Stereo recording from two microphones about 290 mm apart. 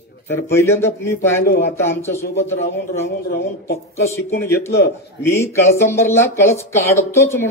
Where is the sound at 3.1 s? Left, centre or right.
Left.